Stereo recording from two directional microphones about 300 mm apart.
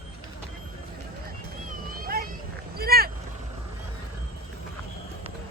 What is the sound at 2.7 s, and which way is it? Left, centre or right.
Boat, right.